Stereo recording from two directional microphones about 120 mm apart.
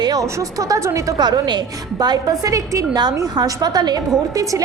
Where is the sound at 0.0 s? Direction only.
30° right (ahead or behind).